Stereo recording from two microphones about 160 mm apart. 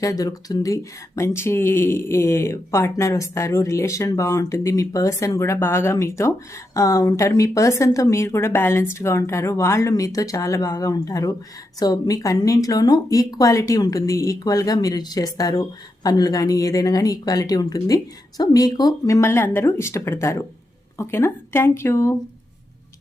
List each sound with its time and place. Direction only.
0.0 s speech: 25° left (ahead or behind)